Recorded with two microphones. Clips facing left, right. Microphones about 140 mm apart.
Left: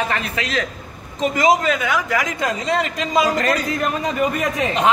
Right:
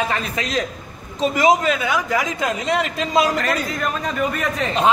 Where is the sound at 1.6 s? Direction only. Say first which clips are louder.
Even; 15° right (ahead or behind).